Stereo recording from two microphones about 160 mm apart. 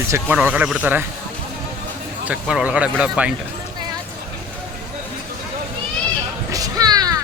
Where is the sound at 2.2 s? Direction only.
5° right (ahead or behind).